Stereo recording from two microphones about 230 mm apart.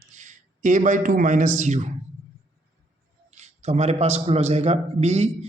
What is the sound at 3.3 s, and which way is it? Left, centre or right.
A man's voice, right.